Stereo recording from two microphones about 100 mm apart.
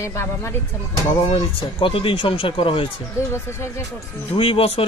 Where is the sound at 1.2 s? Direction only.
60° left (ahead or behind).